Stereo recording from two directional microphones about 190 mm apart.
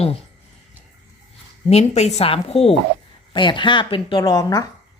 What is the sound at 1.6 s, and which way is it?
A woman's voice, 35° left (ahead or behind).